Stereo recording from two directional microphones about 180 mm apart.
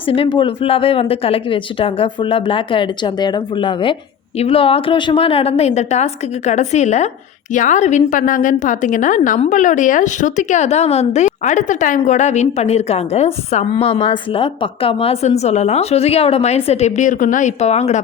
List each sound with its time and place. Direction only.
0.0 s a woman's voice: 30° left (ahead or behind)